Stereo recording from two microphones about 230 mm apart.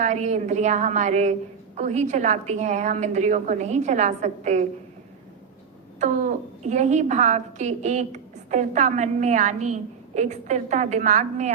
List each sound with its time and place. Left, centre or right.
0.0 s a woman's voice: right
6.0 s a woman's voice: right